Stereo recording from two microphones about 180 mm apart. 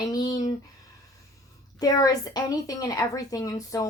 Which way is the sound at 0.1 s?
20° left (ahead or behind).